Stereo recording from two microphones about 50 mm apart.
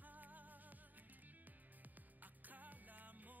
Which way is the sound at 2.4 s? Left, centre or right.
Right.